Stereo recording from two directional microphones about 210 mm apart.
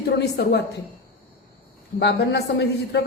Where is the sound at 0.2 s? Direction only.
50° left (ahead or behind).